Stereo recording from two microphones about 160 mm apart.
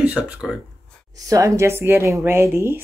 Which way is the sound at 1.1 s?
20° right (ahead or behind).